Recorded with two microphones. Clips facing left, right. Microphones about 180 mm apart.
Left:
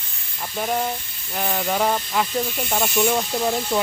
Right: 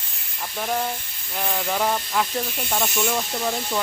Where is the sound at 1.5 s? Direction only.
5° left (ahead or behind).